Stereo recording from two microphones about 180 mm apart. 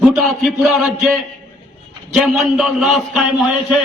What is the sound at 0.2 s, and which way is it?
A man's voice, centre (ahead or behind).